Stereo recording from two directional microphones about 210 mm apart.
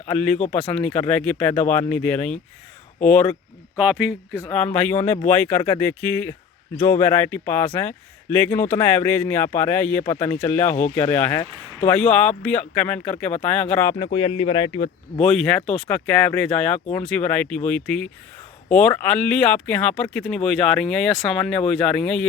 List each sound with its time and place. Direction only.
0.1 s a man's voice: 5° left (ahead or behind)
3.8 s speech: 5° right (ahead or behind)
4.4 s a man's voice: 10° left (ahead or behind)
13.9 s speech: 25° left (ahead or behind)
15.2 s speech: 5° left (ahead or behind)